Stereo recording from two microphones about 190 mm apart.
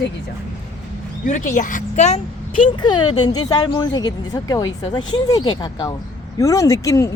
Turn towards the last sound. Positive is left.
turn(degrees=15)  # may be behind; listen again after turning